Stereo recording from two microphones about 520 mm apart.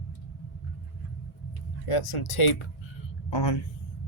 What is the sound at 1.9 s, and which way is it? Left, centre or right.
Speech, left.